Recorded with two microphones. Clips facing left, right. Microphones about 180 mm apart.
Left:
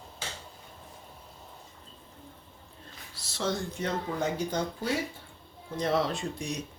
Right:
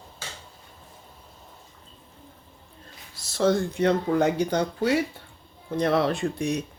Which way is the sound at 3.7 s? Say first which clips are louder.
Right 10 dB; 70° right (ahead or behind).